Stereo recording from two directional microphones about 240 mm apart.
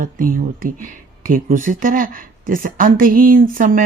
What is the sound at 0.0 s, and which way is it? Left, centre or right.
Speech, right.